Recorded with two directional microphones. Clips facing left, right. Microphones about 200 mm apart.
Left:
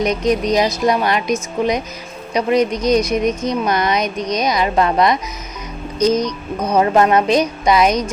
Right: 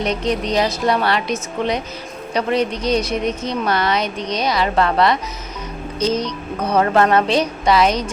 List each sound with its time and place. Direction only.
0.0 s a woman's voice: 15° left (ahead or behind)
6.1 s music: 25° right (ahead or behind)
6.6 s a woman's voice: 15° left (ahead or behind)